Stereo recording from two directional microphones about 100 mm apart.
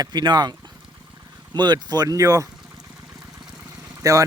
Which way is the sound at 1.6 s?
45° right (ahead or behind).